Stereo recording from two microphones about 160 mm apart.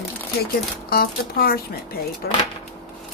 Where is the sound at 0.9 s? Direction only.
70° left (ahead or behind).